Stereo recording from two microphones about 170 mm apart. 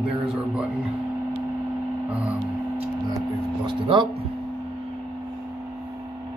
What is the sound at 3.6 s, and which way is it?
Speech, 25° right (ahead or behind).